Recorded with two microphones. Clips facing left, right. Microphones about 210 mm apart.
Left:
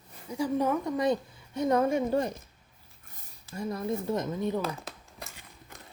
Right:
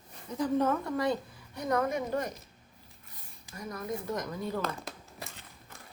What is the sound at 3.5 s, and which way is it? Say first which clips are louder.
A woman's voice: left 5 dB; 30° left (ahead or behind).